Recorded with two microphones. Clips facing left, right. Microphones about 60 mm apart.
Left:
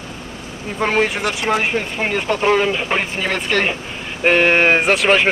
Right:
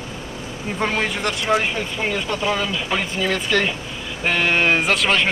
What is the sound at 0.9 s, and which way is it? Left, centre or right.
Speech, left.